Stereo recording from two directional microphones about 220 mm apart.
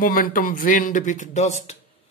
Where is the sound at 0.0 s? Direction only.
40° left (ahead or behind).